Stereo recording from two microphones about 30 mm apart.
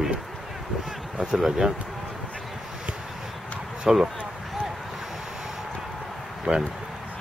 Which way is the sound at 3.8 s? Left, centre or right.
Right.